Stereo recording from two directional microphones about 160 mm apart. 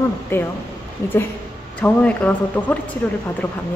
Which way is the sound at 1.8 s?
10° left (ahead or behind).